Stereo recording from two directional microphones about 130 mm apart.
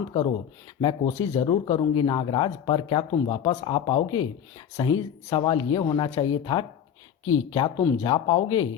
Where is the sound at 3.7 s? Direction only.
45° left (ahead or behind).